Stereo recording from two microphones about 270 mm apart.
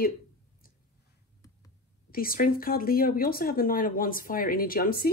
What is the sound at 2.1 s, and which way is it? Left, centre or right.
Speech, left.